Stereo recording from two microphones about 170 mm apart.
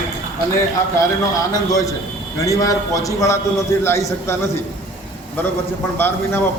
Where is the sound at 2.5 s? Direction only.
20° left (ahead or behind).